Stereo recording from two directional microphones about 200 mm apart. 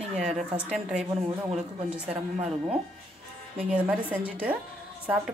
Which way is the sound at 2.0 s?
30° right (ahead or behind).